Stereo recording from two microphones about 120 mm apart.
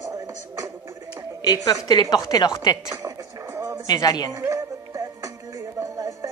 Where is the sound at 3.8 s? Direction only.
35° left (ahead or behind).